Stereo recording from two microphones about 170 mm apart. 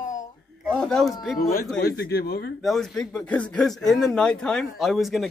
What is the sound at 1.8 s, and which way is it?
Speech, 70° left (ahead or behind).